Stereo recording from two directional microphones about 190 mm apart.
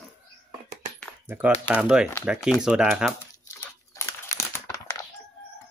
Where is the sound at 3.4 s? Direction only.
15° left (ahead or behind).